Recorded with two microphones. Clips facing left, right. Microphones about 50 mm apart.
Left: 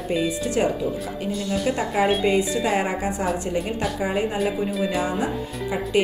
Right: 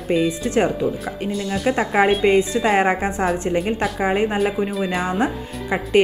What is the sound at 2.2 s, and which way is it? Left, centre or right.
A woman's voice, right.